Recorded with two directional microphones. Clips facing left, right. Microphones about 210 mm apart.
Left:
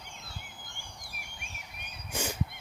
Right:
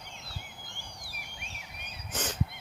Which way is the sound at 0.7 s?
50° left (ahead or behind).